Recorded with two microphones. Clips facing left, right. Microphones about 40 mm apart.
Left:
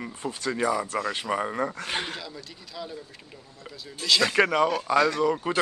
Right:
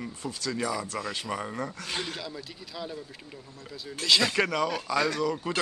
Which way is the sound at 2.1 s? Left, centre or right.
Centre.